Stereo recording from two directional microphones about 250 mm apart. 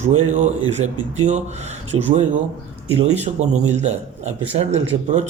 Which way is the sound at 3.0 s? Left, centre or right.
Right.